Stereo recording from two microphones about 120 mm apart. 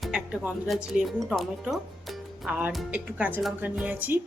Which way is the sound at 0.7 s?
5° right (ahead or behind).